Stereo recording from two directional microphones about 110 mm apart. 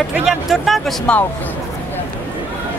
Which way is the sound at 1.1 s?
10° left (ahead or behind).